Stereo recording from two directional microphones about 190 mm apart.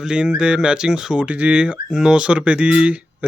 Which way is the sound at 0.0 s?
5° right (ahead or behind).